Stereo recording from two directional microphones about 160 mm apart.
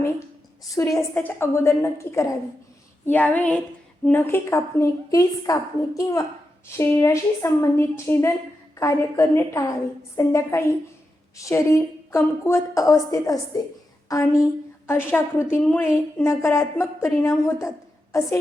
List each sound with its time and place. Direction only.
0.7 s a woman's voice: 20° left (ahead or behind)